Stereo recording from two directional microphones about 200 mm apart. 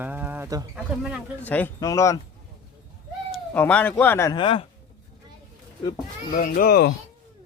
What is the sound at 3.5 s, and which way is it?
Speech, 10° left (ahead or behind).